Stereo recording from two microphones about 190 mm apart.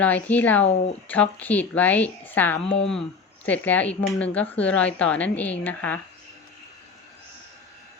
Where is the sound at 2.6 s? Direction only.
30° left (ahead or behind).